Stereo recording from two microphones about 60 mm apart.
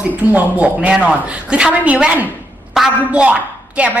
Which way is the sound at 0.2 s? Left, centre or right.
Right.